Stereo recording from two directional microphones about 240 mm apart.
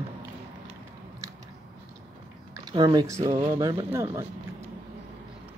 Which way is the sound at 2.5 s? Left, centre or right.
Centre.